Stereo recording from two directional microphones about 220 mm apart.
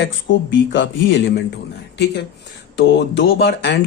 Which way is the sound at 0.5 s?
55° left (ahead or behind).